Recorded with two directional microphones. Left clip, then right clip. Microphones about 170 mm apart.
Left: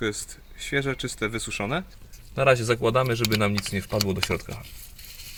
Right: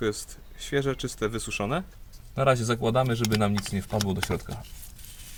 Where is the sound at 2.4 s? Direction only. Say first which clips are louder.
Left 3 dB; 35° left (ahead or behind).